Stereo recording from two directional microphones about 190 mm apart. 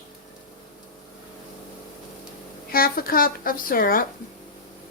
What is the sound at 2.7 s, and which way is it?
A woman's voice, 50° left (ahead or behind).